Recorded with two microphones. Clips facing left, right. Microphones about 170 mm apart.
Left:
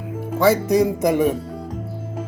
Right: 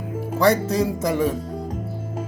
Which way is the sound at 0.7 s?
15° left (ahead or behind).